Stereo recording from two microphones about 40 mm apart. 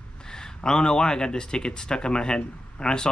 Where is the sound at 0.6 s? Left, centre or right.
Centre.